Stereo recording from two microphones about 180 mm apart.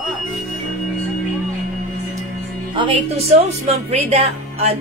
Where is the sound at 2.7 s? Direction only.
30° right (ahead or behind).